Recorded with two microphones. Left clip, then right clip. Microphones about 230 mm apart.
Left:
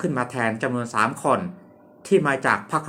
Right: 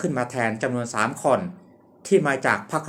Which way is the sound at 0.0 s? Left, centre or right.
Centre.